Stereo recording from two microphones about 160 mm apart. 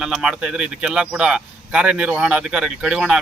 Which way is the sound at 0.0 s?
5° right (ahead or behind).